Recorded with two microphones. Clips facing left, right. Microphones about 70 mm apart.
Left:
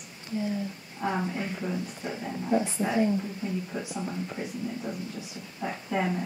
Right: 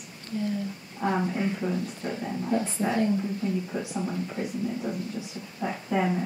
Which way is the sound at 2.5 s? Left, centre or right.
Centre.